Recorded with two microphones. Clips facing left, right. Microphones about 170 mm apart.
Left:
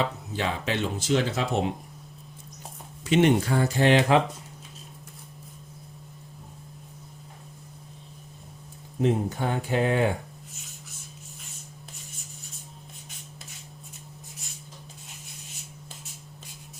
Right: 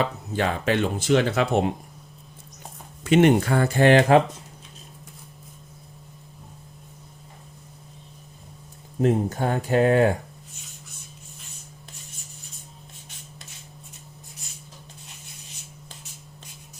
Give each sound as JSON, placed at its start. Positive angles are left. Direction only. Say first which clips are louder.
{"t": 0.3, "sound": "speech", "louder": "right 5 dB", "side_deg": -50}
{"t": 3.0, "sound": "speech", "louder": "right 4 dB", "side_deg": -55}
{"t": 9.0, "sound": "speech", "louder": "right 3 dB", "side_deg": -45}
{"t": 10.5, "sound": "writing", "louder": "even", "side_deg": 0}